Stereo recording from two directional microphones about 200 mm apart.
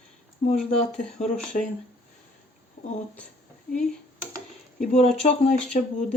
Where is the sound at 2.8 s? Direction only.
45° left (ahead or behind).